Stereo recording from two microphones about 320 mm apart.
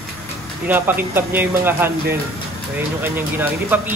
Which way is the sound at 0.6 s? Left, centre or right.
Centre.